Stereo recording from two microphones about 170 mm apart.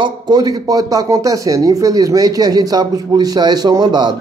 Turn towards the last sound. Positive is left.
turn(degrees=-25)  # may be behind; listen again after turning